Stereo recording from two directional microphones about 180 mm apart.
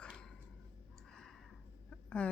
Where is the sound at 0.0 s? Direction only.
5° left (ahead or behind).